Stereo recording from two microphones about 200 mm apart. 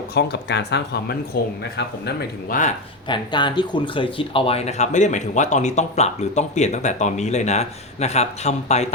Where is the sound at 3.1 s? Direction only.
25° left (ahead or behind).